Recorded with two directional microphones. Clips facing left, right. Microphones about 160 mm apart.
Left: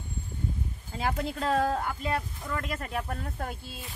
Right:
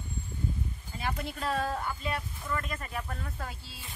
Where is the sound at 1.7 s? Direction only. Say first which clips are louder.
Left 4 dB; 60° left (ahead or behind).